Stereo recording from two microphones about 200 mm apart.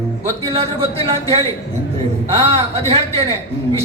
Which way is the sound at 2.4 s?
30° right (ahead or behind).